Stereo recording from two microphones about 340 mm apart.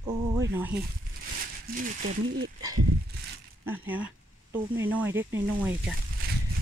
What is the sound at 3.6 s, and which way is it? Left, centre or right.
Speech, centre.